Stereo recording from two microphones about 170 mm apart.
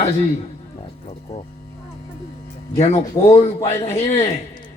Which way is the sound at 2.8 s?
35° left (ahead or behind).